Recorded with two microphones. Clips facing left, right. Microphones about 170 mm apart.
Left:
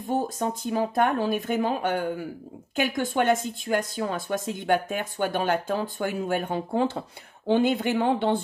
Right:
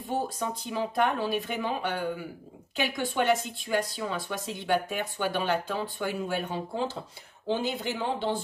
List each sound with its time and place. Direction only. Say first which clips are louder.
0.0 s speech: left 4 dB; 45° left (ahead or behind)